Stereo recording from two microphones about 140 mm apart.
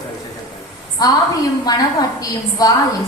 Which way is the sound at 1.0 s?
30° left (ahead or behind).